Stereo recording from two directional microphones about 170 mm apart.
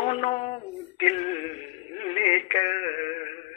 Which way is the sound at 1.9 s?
35° left (ahead or behind).